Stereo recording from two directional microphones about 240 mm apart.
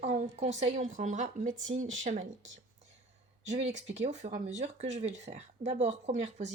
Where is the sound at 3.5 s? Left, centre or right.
Right.